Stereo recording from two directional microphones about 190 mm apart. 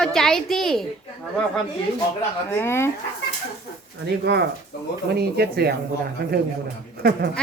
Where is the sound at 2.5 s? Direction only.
10° left (ahead or behind).